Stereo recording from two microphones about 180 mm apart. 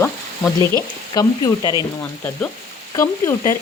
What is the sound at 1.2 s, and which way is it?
Frying, 20° left (ahead or behind).